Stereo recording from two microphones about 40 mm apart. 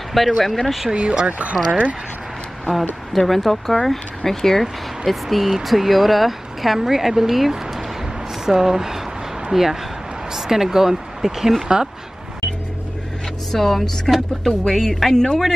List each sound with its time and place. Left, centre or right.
0.4 s speech: centre
0.9 s speech: right
3.1 s speech: centre
5.0 s speech: centre
13.5 s a woman's voice: centre